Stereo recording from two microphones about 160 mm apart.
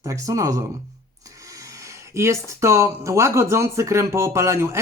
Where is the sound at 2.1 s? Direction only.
20° right (ahead or behind).